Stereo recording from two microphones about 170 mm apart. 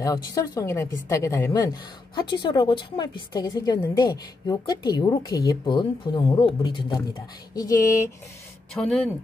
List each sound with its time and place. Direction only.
0.0 s a woman's voice: 20° left (ahead or behind)
8.7 s speech: 5° left (ahead or behind)